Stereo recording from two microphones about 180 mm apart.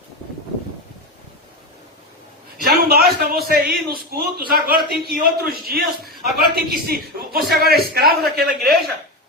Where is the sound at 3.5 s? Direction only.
60° right (ahead or behind).